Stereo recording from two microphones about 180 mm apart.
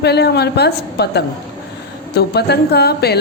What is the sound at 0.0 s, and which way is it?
A woman's voice, 65° left (ahead or behind).